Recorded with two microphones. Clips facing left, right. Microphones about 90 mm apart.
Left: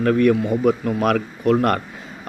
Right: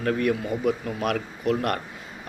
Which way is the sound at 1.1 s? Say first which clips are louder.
Left 7 dB; 65° left (ahead or behind).